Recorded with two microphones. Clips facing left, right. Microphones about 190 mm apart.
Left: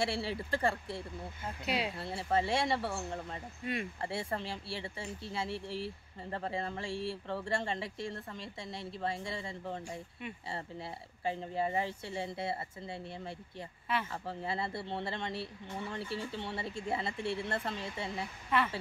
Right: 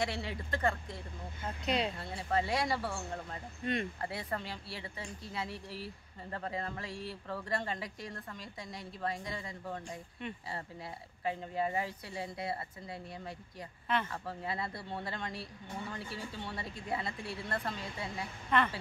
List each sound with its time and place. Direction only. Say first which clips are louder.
0.0 s speech: left 2 dB; 30° left (ahead or behind)
1.7 s speech: right 2 dB; 5° left (ahead or behind)
2.0 s speech: left 2 dB; 30° left (ahead or behind)
3.6 s speech: right 3 dB; 5° left (ahead or behind)
4.0 s speech: left 2 dB; 30° left (ahead or behind)
11.2 s speech: left 1 dB; 30° left (ahead or behind)
18.5 s a woman's voice: right 1 dB; 5° left (ahead or behind)